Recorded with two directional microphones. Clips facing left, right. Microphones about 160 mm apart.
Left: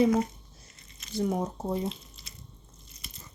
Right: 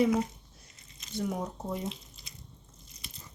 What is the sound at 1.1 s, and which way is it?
Speech, 35° left (ahead or behind).